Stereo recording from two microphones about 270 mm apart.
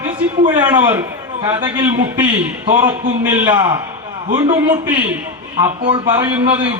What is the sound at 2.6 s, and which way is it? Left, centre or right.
Speech, right.